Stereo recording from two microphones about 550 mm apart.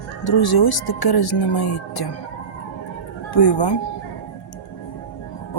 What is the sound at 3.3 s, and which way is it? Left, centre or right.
Speech, left.